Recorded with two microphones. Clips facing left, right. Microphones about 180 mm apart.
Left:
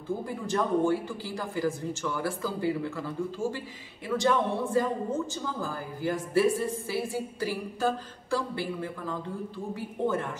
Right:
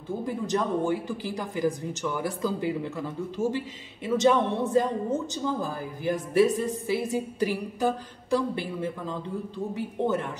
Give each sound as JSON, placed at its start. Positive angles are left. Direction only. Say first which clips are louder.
{"t": 0.2, "sound": "speech", "louder": "right 5 dB", "side_deg": -15}